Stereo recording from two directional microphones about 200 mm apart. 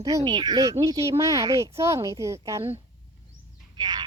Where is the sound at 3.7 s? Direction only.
20° right (ahead or behind).